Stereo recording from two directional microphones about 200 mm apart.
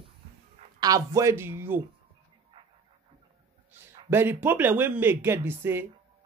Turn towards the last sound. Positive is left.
turn(degrees=-10)  # may be behind; listen again after turning